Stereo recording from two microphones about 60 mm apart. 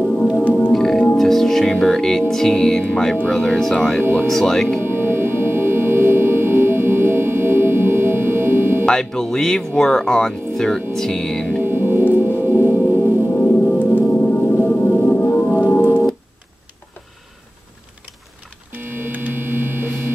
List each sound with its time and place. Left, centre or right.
0.7 s music: centre
3.3 s speech: centre
4.0 s speech: right
4.3 s speech: centre
4.7 s music: right
8.8 s speech: centre
11.6 s music: right
13.6 s music: left
15.5 s organ: left
18.7 s mains hum: right